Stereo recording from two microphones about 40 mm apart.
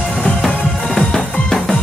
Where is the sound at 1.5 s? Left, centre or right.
Centre.